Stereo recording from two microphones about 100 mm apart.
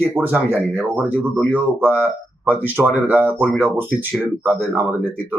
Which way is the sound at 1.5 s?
15° right (ahead or behind).